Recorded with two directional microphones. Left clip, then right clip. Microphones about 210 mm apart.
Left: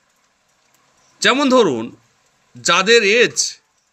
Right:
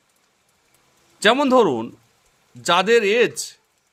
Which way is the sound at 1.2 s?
15° right (ahead or behind).